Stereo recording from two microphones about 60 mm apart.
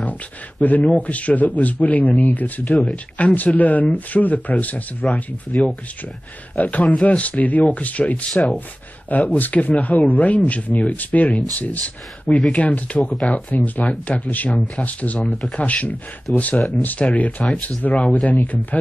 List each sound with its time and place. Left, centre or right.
0.6 s a man's voice: left